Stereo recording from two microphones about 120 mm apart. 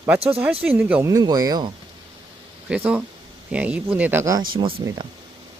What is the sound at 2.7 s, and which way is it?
Speech, 10° right (ahead or behind).